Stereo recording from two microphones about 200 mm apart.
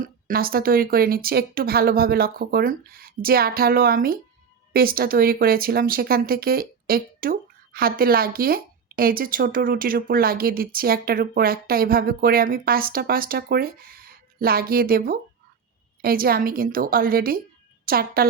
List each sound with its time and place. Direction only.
0.0 s speech: 45° right (ahead or behind)